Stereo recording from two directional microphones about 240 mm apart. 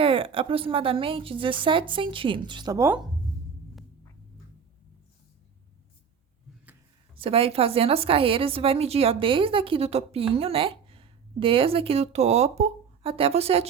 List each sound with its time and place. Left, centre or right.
0.0 s a woman's voice: right
7.2 s a woman's voice: right